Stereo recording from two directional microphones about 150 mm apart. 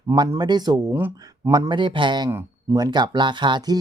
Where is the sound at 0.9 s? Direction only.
15° right (ahead or behind).